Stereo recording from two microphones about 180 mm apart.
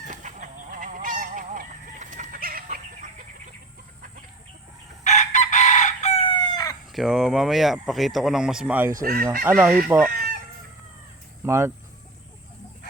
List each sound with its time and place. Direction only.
0.1 s goose: 45° right (ahead or behind)
5.0 s chicken: 40° left (ahead or behind)
6.5 s chicken: 20° left (ahead or behind)
6.9 s speech: centre (ahead or behind)
9.0 s chicken: 50° right (ahead or behind)
9.4 s speech: 10° right (ahead or behind)
10.1 s chicken: 55° right (ahead or behind)
11.4 s speech: 15° right (ahead or behind)